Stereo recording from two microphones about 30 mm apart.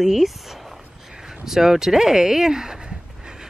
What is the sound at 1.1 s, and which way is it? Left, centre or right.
Speech, centre.